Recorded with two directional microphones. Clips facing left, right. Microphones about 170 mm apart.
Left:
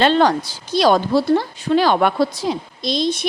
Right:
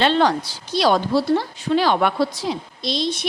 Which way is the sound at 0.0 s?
45° left (ahead or behind).